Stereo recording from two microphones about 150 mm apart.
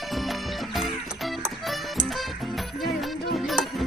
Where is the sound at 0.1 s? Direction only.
Centre (ahead or behind).